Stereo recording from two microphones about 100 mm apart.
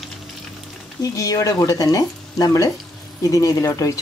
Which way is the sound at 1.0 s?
35° left (ahead or behind).